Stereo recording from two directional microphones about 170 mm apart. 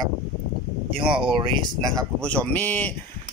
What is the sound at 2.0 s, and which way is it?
Speech, 5° left (ahead or behind).